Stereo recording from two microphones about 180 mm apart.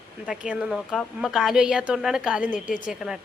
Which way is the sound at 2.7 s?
45° left (ahead or behind).